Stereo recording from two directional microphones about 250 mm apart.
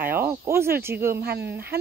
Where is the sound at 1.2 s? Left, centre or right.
Right.